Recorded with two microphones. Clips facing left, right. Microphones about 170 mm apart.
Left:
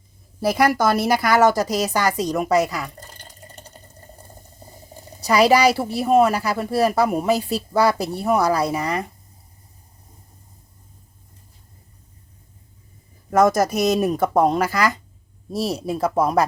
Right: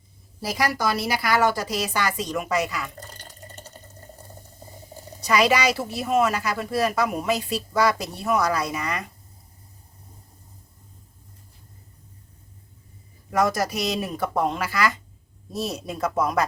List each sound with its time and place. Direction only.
0.4 s a woman's voice: 55° left (ahead or behind); by 2.9 s 35° left (ahead or behind)
3.1 s water: 15° left (ahead or behind)
5.2 s a woman's voice: 35° left (ahead or behind)
13.3 s speech: 45° left (ahead or behind)
15.5 s a woman's voice: 30° left (ahead or behind)